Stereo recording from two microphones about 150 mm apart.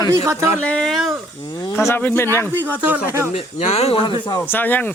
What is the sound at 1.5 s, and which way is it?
Speech, 20° left (ahead or behind).